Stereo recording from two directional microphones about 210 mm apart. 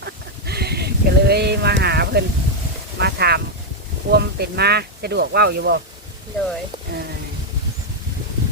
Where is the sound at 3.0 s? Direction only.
50° right (ahead or behind).